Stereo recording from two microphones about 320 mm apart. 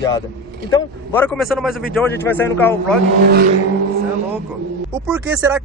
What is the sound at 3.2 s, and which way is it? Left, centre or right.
Vehicle, right.